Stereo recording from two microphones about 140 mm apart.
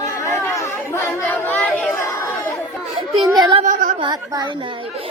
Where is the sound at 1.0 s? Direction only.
15° left (ahead or behind).